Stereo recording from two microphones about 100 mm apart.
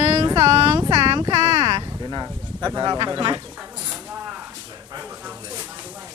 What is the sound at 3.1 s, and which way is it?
Speech, 55° right (ahead or behind).